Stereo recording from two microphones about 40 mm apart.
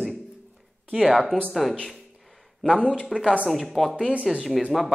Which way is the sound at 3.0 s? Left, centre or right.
Centre.